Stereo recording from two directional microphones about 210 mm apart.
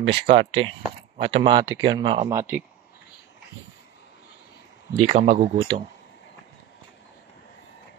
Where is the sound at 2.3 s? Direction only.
15° right (ahead or behind).